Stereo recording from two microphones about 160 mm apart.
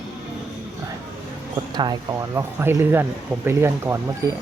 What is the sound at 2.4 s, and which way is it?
Speech, 15° right (ahead or behind).